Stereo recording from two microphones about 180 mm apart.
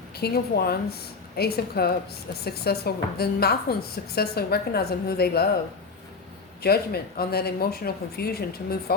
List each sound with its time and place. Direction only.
0.2 s a woman's voice: 60° left (ahead or behind)
6.6 s a woman's voice: 60° left (ahead or behind)